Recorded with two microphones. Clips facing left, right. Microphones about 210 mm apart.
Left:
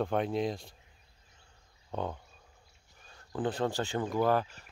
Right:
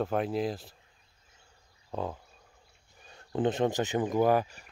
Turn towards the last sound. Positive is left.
turn(degrees=-15)  # may be behind; listen again after turning